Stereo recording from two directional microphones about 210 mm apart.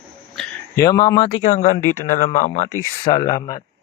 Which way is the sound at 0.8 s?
20° left (ahead or behind).